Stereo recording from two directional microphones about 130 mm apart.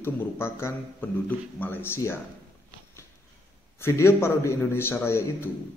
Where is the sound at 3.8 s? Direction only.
20° left (ahead or behind).